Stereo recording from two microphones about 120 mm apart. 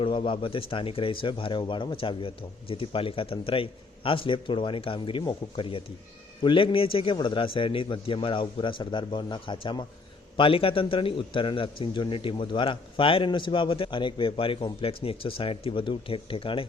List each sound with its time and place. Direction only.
0.0 s a man's voice: 45° left (ahead or behind)